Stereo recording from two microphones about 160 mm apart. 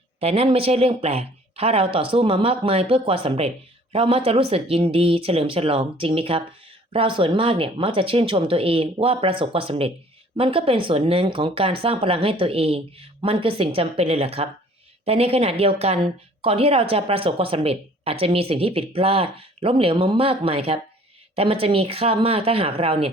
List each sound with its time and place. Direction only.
0.2 s a woman's voice: 40° right (ahead or behind)